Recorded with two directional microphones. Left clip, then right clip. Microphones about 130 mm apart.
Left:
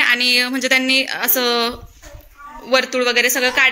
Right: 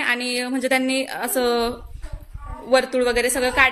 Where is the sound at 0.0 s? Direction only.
5° right (ahead or behind).